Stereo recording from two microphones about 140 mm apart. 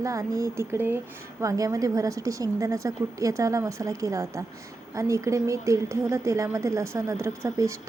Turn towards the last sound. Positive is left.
turn(degrees=-20)  # may be behind; listen again after turning